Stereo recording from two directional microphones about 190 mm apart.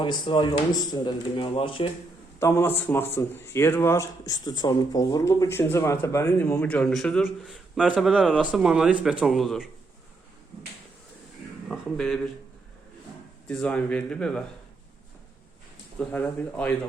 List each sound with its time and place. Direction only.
0.0 s speech: 25° left (ahead or behind)
2.4 s a man's voice: 15° left (ahead or behind)
11.7 s speech: 5° left (ahead or behind)
13.5 s speech: 5° left (ahead or behind)
16.0 s a man's voice: 10° left (ahead or behind)